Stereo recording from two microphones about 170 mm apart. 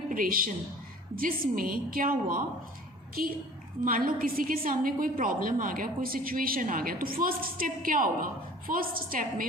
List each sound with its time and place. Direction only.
0.1 s a woman's voice: 55° right (ahead or behind)